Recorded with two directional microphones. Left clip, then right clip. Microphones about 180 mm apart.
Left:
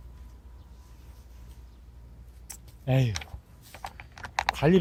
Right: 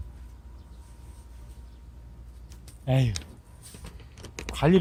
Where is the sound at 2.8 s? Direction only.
35° left (ahead or behind).